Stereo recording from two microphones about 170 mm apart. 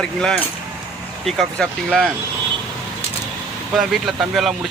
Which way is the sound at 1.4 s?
5° left (ahead or behind).